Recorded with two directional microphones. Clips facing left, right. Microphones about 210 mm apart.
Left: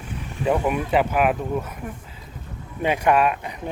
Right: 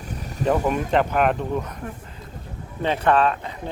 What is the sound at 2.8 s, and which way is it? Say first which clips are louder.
Speech: even; 10° left (ahead or behind).